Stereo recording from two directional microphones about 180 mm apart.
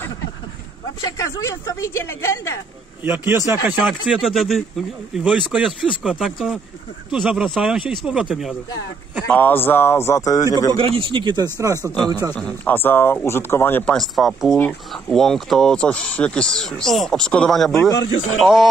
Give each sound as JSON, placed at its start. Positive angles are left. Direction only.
{"t": 1.0, "sound": "speech", "side_deg": 20}
{"t": 3.0, "sound": "speech", "side_deg": -15}
{"t": 3.6, "sound": "speech", "side_deg": -5}
{"t": 9.3, "sound": "speech", "side_deg": 10}
{"t": 10.8, "sound": "speech", "side_deg": -30}
{"t": 11.8, "sound": "speech", "side_deg": 5}
{"t": 12.1, "sound": "speech", "side_deg": -20}
{"t": 12.4, "sound": "speech", "side_deg": 5}
{"t": 17.7, "sound": "speech", "side_deg": 20}
{"t": 18.4, "sound": "speech", "side_deg": 0}